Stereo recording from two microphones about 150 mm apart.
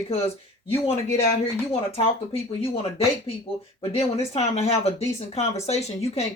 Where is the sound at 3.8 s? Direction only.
40° left (ahead or behind).